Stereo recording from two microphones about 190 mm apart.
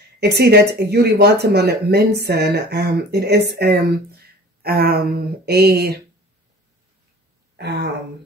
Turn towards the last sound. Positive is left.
turn(degrees=-60)  # may be behind; listen again after turning